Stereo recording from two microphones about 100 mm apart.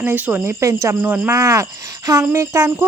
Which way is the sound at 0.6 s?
30° right (ahead or behind).